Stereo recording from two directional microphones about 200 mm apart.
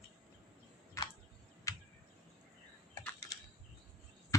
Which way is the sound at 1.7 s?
15° left (ahead or behind).